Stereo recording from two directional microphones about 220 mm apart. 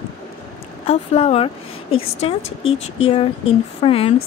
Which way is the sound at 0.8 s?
30° left (ahead or behind).